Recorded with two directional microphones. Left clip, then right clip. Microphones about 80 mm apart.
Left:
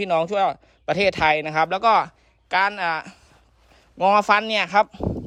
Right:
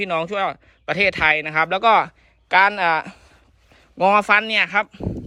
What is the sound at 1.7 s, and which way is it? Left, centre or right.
Speech, left.